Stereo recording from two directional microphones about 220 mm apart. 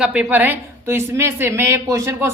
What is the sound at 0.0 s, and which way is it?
A woman's voice, 5° right (ahead or behind).